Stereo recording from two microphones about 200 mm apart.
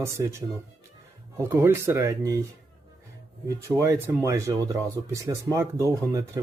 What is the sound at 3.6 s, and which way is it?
Speech, 15° right (ahead or behind).